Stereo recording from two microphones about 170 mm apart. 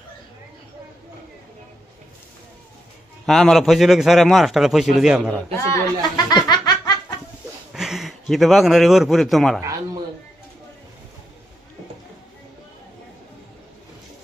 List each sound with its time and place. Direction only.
3.3 s a man's voice: centre (ahead or behind)
5.7 s laughter: 25° left (ahead or behind)
7.7 s speech: centre (ahead or behind)